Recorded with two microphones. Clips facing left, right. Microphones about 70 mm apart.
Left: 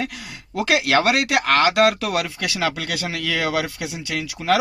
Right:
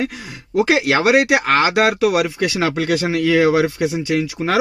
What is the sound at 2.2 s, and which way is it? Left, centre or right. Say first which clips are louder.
Speech: right 5 dB; right.